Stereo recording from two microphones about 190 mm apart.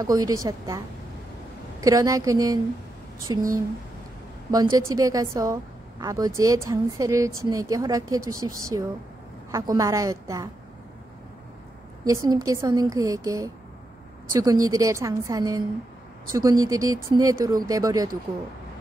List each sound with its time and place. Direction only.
0.0 s a woman's voice: 20° right (ahead or behind)
4.5 s a woman's voice: 20° right (ahead or behind)
12.0 s a woman's voice: 20° right (ahead or behind)